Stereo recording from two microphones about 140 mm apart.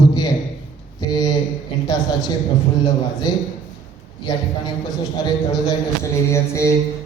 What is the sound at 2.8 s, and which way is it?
A man's voice, 30° left (ahead or behind).